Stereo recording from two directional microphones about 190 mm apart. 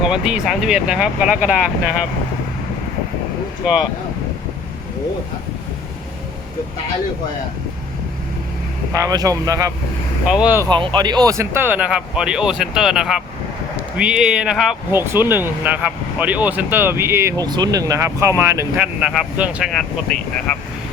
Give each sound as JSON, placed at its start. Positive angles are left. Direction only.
{"t": 0.0, "sound": "speech", "side_deg": -5}
{"t": 8.9, "sound": "speech", "side_deg": -20}
{"t": 10.2, "sound": "speech", "side_deg": -5}
{"t": 10.7, "sound": "speech", "side_deg": -25}
{"t": 18.9, "sound": "speech", "side_deg": -5}